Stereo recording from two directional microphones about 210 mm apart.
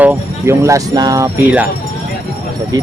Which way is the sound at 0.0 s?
10° right (ahead or behind).